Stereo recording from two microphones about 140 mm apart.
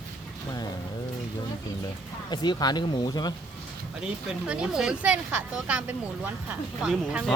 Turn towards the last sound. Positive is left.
turn(degrees=-5)  # may be behind; listen again after turning